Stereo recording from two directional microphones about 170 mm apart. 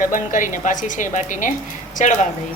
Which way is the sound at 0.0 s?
50° left (ahead or behind).